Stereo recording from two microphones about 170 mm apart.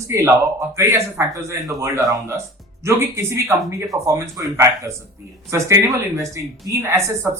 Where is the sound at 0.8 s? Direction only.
15° right (ahead or behind).